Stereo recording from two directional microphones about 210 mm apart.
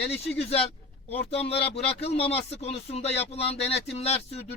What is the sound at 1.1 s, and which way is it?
Speech, 30° left (ahead or behind).